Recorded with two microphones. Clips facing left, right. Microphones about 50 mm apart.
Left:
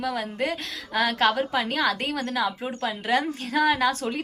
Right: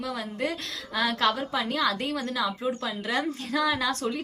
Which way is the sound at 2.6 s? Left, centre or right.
Left.